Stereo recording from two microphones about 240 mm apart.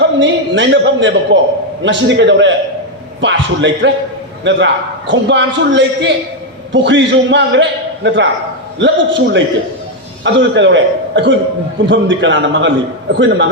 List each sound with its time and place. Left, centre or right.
0.0 s a man's voice: right